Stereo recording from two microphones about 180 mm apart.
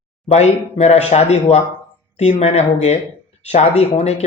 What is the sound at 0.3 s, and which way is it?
A man's voice, 40° left (ahead or behind).